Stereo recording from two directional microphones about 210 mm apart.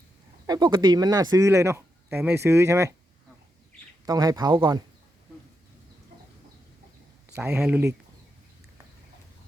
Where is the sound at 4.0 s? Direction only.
20° right (ahead or behind).